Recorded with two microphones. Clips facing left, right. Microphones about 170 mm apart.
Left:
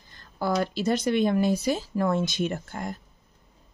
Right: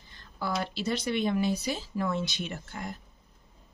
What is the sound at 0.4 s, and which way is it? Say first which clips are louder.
Speech: left 6 dB; 45° left (ahead or behind).